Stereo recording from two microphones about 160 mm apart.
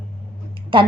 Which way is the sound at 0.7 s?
30° right (ahead or behind).